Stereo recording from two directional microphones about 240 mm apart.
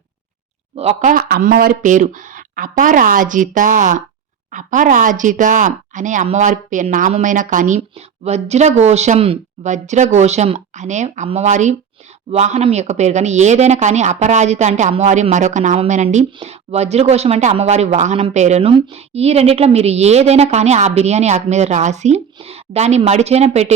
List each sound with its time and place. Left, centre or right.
0.8 s speech: right